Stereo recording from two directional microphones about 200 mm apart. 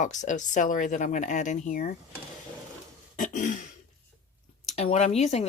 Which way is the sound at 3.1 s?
40° left (ahead or behind).